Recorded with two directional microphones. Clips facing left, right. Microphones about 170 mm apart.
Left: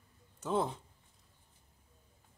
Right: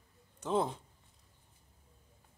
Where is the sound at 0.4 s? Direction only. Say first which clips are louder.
Right 1 dB; 5° left (ahead or behind).